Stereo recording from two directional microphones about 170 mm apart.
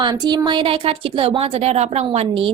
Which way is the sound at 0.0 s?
25° right (ahead or behind).